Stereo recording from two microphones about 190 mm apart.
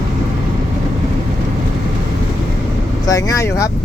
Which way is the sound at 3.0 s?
15° left (ahead or behind).